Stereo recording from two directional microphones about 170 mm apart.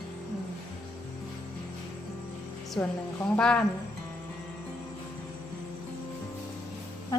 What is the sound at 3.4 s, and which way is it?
Speech, 5° left (ahead or behind).